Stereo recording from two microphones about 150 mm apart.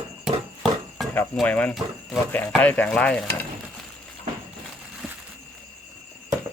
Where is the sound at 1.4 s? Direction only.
10° left (ahead or behind).